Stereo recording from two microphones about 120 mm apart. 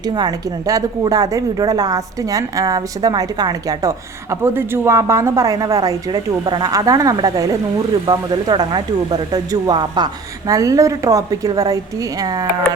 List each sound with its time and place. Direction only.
0.0 s a woman's voice: 35° right (ahead or behind)